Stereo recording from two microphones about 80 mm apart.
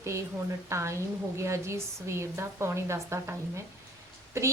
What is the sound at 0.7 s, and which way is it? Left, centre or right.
A woman's voice, right.